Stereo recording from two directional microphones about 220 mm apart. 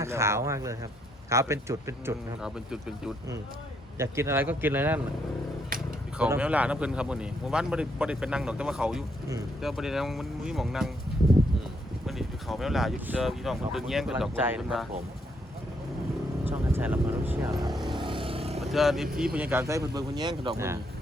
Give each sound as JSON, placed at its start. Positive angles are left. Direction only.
{"t": 0.0, "sound": "speech", "side_deg": -10}
{"t": 6.1, "sound": "speech", "side_deg": -5}
{"t": 12.0, "sound": "speech", "side_deg": 0}
{"t": 16.5, "sound": "speech", "side_deg": -10}
{"t": 17.8, "sound": "boat", "side_deg": -20}
{"t": 18.6, "sound": "speech", "side_deg": 0}